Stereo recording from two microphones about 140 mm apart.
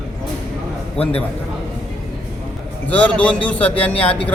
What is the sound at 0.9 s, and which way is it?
Speech, 45° left (ahead or behind).